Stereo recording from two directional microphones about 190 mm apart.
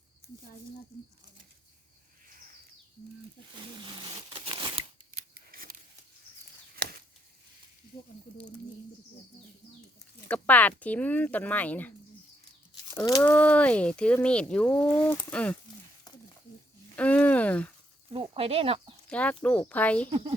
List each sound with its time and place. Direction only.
4.4 s a sound: 25° right (ahead or behind)
5.5 s scissors: 50° right (ahead or behind)
10.2 s speech: 5° left (ahead or behind)
16.9 s a sound: 10° left (ahead or behind)
18.1 s speech: 30° right (ahead or behind)
19.0 s speech: 5° left (ahead or behind)
20.1 s speech: 30° right (ahead or behind)